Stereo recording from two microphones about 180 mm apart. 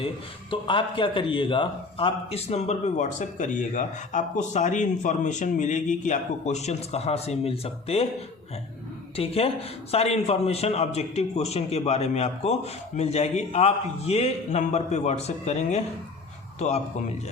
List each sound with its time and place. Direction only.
0.5 s a man's voice: 30° left (ahead or behind)
9.1 s a man's voice: 35° left (ahead or behind)